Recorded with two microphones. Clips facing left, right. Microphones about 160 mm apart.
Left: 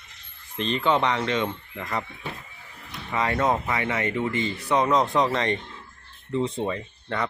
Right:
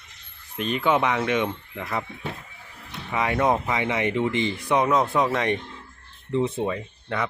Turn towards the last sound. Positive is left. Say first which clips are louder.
# right 1 dB
turn(degrees=-5)  # may be behind; listen again after turning